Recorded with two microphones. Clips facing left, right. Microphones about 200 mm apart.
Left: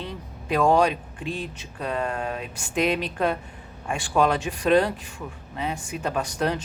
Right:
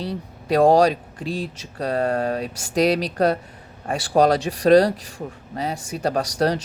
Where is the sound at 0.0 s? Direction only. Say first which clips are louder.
Right 6 dB; 35° right (ahead or behind).